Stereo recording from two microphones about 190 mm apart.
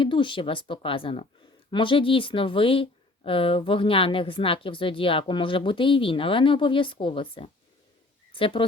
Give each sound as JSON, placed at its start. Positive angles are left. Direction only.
{"t": 0.0, "sound": "speech", "side_deg": 25}